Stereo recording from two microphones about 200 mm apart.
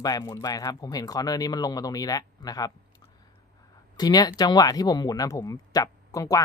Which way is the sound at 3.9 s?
20° left (ahead or behind).